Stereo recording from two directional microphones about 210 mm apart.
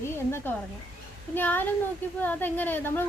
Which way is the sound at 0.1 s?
10° left (ahead or behind).